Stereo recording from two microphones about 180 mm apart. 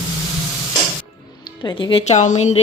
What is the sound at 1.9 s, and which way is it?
Speech, 35° left (ahead or behind).